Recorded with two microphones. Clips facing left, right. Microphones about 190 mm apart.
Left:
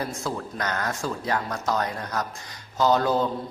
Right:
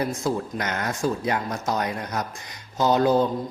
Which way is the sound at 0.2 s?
20° right (ahead or behind).